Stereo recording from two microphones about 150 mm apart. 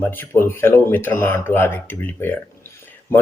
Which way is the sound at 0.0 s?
15° left (ahead or behind).